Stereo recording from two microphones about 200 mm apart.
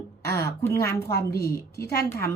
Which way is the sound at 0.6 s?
15° left (ahead or behind).